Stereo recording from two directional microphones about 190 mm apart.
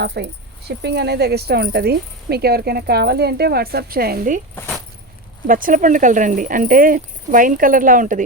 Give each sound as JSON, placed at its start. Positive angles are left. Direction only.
{"t": 0.0, "sound": "speech", "side_deg": -60}
{"t": 5.5, "sound": "speech", "side_deg": -45}